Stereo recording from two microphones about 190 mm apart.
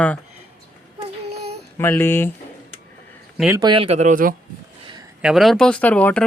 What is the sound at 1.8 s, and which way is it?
Speech, 10° left (ahead or behind).